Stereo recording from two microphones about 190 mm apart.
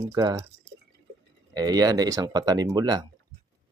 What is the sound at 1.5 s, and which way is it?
Speech, 20° right (ahead or behind).